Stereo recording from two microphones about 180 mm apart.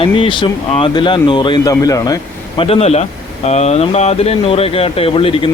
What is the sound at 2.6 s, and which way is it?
Speech, 30° left (ahead or behind).